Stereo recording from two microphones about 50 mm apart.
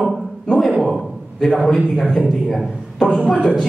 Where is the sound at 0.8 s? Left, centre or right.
Centre.